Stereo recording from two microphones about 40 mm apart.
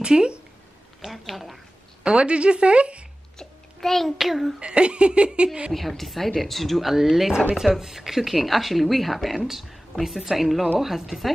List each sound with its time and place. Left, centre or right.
0.0 s speech: right
1.0 s speech: centre
2.0 s speech: right
3.3 s babbling: centre
4.2 s speech: centre
4.6 s speech: right
5.7 s speech: centre